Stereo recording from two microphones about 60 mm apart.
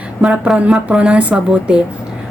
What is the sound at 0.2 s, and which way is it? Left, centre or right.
A woman's voice, centre.